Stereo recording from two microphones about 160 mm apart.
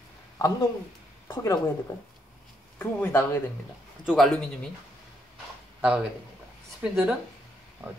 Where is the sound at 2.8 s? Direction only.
15° left (ahead or behind).